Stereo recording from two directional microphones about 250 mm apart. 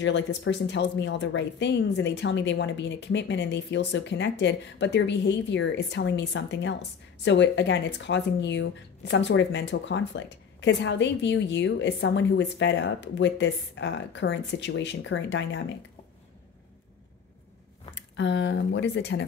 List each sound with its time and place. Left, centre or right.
0.0 s speech: left
18.1 s speech: left